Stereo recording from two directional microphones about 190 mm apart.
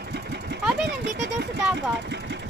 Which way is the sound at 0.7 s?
65° right (ahead or behind).